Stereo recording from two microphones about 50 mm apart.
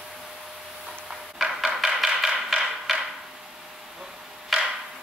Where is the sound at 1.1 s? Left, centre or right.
Centre.